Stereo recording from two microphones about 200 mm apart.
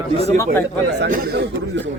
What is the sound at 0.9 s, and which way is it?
Speech, 55° right (ahead or behind).